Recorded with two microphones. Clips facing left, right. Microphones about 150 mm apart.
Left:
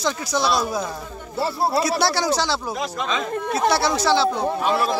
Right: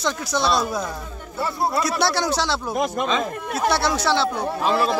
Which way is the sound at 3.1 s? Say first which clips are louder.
Even; centre (ahead or behind).